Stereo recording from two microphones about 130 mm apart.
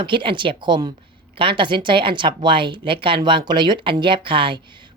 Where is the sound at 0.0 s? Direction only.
40° right (ahead or behind).